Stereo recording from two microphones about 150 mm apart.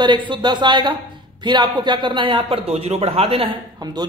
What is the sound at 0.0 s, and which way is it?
Speech, 30° right (ahead or behind).